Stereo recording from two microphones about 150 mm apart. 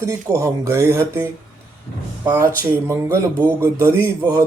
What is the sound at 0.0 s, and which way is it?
Speech, 20° right (ahead or behind).